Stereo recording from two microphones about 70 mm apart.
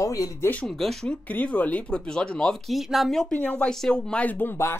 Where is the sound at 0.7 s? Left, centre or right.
Centre.